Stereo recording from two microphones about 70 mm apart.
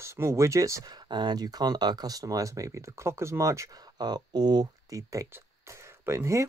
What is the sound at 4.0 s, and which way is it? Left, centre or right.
Speech, right.